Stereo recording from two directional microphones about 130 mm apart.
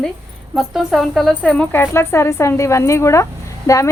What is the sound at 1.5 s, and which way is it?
Speech, 15° left (ahead or behind).